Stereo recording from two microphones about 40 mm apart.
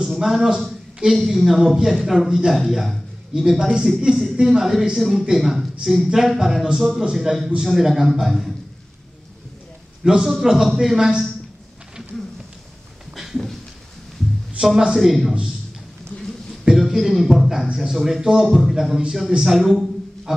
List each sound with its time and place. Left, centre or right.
0.2 s a woman's voice: centre
2.9 s a sound: centre
3.5 s a woman's voice: right
10.0 s speech: centre
13.1 s a sound: centre
14.6 s a man's voice: right
15.0 s a woman's voice: centre
16.6 s a woman's voice: centre
20.3 s a sound: centre